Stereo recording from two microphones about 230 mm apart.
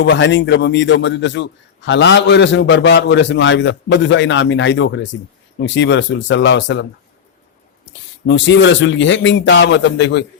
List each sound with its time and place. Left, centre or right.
0.0 s a man's voice: left
8.3 s a man's voice: left